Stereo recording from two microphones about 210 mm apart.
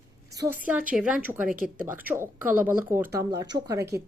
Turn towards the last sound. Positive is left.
turn(degrees=-15)  # may be behind; listen again after turning